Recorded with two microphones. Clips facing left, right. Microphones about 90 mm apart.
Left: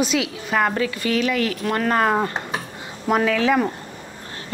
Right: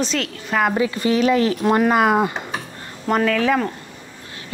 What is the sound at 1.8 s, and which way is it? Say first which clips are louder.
Speech: left 1 dB; 10° right (ahead or behind).